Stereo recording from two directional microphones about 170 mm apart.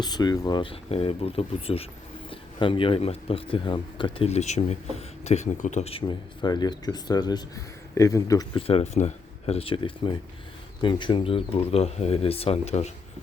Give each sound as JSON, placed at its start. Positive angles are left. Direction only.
{"t": 0.0, "sound": "speech", "side_deg": 25}
{"t": 8.5, "sound": "speech", "side_deg": 35}